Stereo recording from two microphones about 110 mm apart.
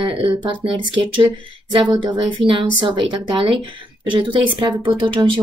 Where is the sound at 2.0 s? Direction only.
45° right (ahead or behind).